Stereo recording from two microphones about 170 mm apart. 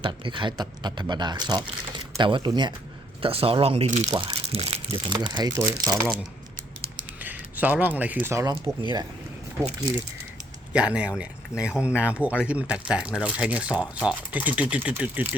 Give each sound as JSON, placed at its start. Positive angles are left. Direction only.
{"t": 0.0, "sound": "speech", "side_deg": -30}
{"t": 4.1, "sound": "speech", "side_deg": -25}
{"t": 7.2, "sound": "speech", "side_deg": -10}
{"t": 8.8, "sound": "speech", "side_deg": -25}
{"t": 10.7, "sound": "speech", "side_deg": -5}